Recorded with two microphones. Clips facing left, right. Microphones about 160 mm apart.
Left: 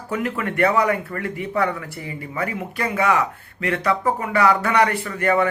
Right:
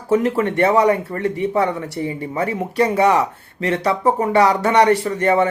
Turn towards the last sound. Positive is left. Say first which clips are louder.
# right 4 dB
turn(degrees=-25)  # may be behind; listen again after turning